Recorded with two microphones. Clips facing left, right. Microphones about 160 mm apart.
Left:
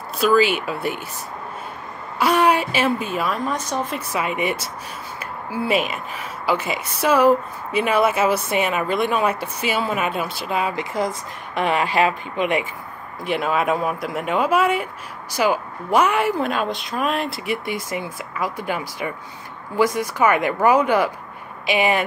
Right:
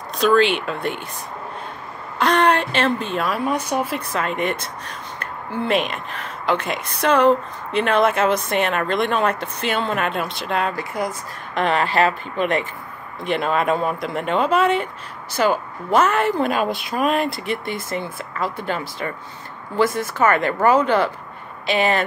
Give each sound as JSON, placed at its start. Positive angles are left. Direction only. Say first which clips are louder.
{"t": 0.2, "sound": "speech", "louder": "right 1 dB", "side_deg": 5}
{"t": 2.1, "sound": "a woman's voice", "louder": "even", "side_deg": 10}
{"t": 4.1, "sound": "speech", "louder": "left 2 dB", "side_deg": 10}
{"t": 10.8, "sound": "speech", "louder": "left 2 dB", "side_deg": 20}
{"t": 11.5, "sound": "speech", "louder": "right 1 dB", "side_deg": 10}
{"t": 16.4, "sound": "speech", "louder": "right 2 dB", "side_deg": -5}